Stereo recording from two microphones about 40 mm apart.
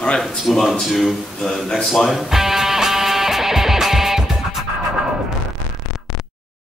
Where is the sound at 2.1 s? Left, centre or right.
Centre.